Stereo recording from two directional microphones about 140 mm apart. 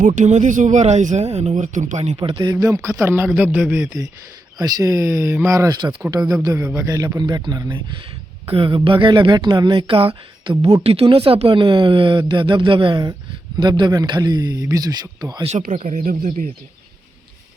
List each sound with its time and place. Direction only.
0.2 s speech: 60° right (ahead or behind)
2.1 s speech: 35° right (ahead or behind)
15.4 s speech: 65° right (ahead or behind)